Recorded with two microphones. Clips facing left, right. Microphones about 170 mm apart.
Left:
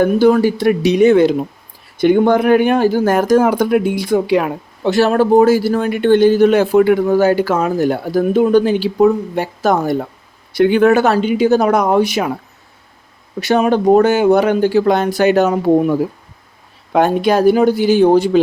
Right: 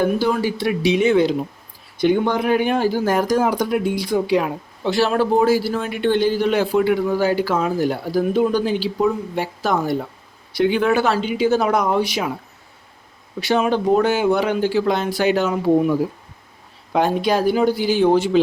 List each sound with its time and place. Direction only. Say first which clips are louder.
0.0 s speech: left 8 dB; 50° left (ahead or behind)
4.9 s speech: left 6 dB; 50° left (ahead or behind)
13.5 s speech: left 6 dB; 50° left (ahead or behind)